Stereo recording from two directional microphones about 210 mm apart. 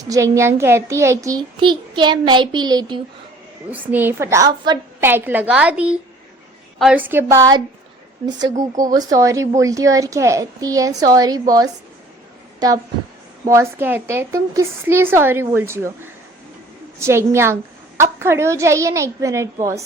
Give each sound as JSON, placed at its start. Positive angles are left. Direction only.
{"t": 0.0, "sound": "a child's voice", "side_deg": -15}
{"t": 3.7, "sound": "a child's voice", "side_deg": -10}
{"t": 8.7, "sound": "a child's voice", "side_deg": -20}
{"t": 17.0, "sound": "a child's voice", "side_deg": -10}